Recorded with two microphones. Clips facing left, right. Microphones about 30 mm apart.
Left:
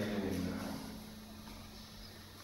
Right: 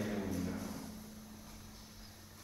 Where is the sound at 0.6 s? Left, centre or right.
Left.